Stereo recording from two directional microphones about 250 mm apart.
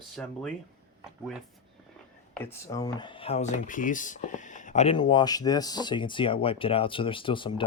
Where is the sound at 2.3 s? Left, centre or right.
Centre.